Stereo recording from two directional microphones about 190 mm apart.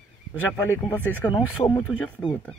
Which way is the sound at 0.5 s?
15° left (ahead or behind).